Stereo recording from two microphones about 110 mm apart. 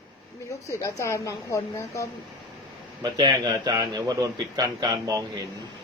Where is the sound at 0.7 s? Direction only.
25° left (ahead or behind).